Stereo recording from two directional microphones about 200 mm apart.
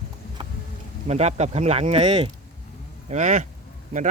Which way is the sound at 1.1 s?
35° right (ahead or behind).